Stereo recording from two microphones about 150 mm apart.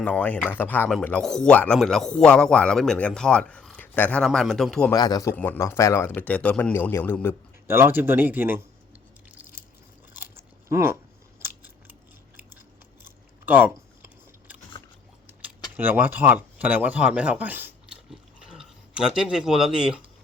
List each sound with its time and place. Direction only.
0.0 s a man's voice: 10° left (ahead or behind)
4.9 s speech: 25° left (ahead or behind)
6.1 s speech: 10° left (ahead or behind)
7.7 s speech: 15° right (ahead or behind)
10.3 s chewing: 15° right (ahead or behind)
11.3 s scissors: 10° right (ahead or behind)
13.1 s chewing: 15° right (ahead or behind)
15.7 s speech: 15° right (ahead or behind)
18.1 s a sound: 5° right (ahead or behind)